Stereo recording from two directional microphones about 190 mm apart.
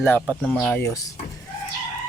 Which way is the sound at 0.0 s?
10° left (ahead or behind).